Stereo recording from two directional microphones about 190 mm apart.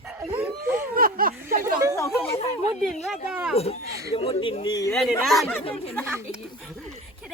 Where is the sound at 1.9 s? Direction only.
15° left (ahead or behind).